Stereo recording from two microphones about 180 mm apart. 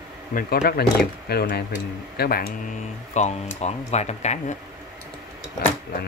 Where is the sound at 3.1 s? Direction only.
40° left (ahead or behind).